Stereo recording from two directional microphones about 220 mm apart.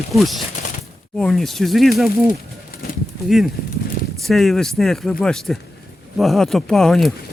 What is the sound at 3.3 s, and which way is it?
Speech, centre (ahead or behind).